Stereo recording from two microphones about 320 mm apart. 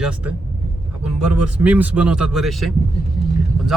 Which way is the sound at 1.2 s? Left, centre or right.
Centre.